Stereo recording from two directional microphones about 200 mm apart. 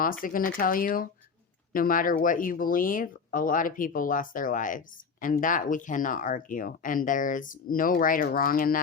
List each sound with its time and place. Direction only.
0.0 s speech: 45° left (ahead or behind)